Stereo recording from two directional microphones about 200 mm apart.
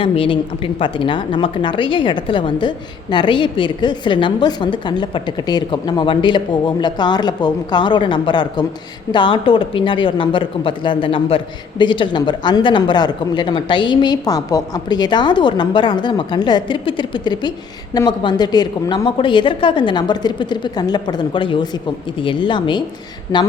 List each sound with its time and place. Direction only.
0.0 s a woman's voice: 25° left (ahead or behind)